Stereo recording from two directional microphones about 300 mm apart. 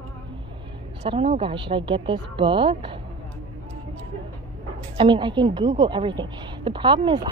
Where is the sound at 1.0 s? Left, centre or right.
Centre.